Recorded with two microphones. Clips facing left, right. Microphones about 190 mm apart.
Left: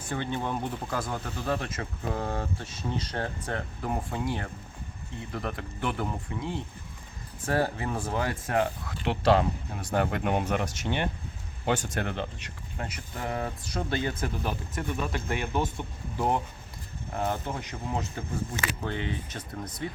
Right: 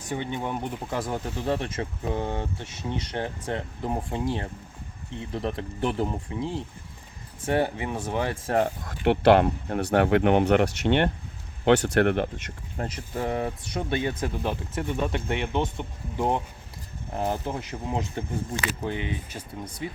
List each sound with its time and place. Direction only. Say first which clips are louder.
0.2 s speech: left 2 dB; 15° right (ahead or behind)
9.0 s speech: right 5 dB; 65° right (ahead or behind)
12.8 s speech: right 5 dB; 40° right (ahead or behind)
13.1 s speech: right 5 dB; 25° right (ahead or behind)
17.4 s speech: right 3 dB; 30° right (ahead or behind)
18.6 s speech: right 2 dB; 15° right (ahead or behind)